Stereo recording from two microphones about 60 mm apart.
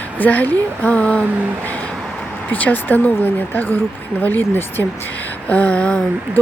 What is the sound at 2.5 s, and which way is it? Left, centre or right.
Speech, left.